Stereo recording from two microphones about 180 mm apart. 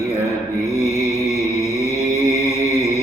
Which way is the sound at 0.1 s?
15° left (ahead or behind).